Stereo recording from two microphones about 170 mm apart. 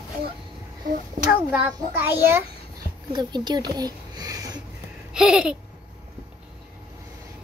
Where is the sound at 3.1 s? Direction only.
25° right (ahead or behind).